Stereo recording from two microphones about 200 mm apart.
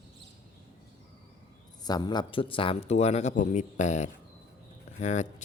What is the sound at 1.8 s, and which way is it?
Speech, 20° left (ahead or behind).